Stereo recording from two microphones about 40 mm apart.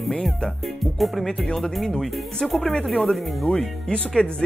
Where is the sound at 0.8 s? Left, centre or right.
Centre.